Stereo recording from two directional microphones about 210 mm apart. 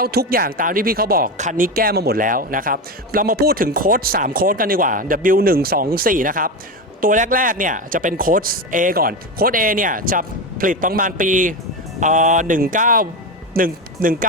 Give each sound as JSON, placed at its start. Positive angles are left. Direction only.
{"t": 0.0, "sound": "speech", "side_deg": -45}